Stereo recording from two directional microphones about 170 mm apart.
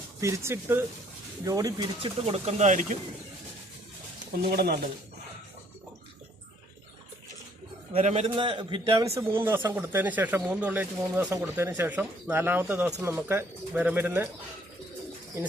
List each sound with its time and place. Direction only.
0.2 s speech: 15° right (ahead or behind)
2.0 s speech: 35° right (ahead or behind)
4.4 s speech: 70° right (ahead or behind)
7.9 s speech: 35° right (ahead or behind)
9.1 s speech: 15° right (ahead or behind)